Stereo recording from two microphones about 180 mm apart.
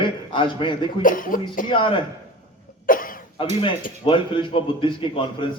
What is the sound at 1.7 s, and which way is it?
Speech, 30° left (ahead or behind).